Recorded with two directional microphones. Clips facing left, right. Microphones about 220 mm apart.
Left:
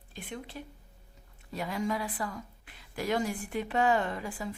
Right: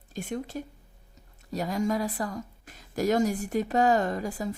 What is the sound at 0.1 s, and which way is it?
Speech, 45° right (ahead or behind).